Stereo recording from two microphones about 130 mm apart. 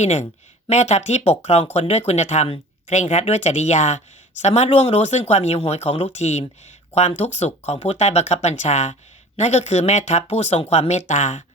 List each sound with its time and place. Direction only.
0.0 s speech: 60° left (ahead or behind)